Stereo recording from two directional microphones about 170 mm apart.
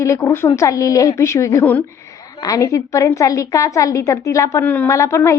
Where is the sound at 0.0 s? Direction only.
20° left (ahead or behind).